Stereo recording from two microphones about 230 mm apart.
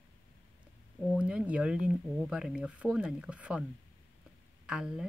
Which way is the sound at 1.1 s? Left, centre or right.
Centre.